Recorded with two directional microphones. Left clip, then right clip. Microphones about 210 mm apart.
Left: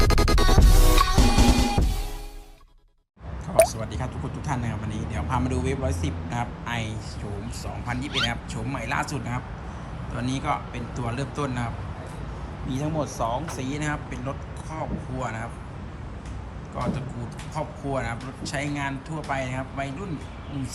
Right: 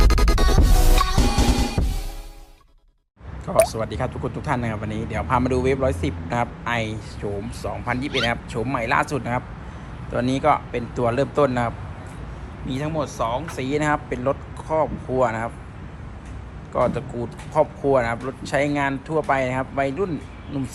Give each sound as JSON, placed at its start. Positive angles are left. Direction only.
{"t": 0.0, "sound": "music", "side_deg": 0}
{"t": 3.8, "sound": "speech", "side_deg": 10}
{"t": 12.6, "sound": "speech", "side_deg": 15}
{"t": 16.7, "sound": "speech", "side_deg": 5}